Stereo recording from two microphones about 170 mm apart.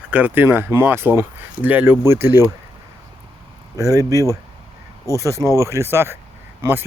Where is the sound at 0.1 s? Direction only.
10° right (ahead or behind).